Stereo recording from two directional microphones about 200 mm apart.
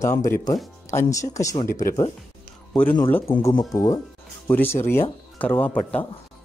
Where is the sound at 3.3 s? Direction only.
25° left (ahead or behind); by 6.0 s 10° left (ahead or behind).